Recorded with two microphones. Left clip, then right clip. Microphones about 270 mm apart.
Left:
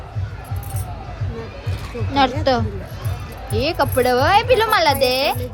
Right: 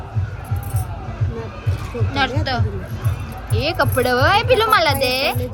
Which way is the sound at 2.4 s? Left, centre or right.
Left.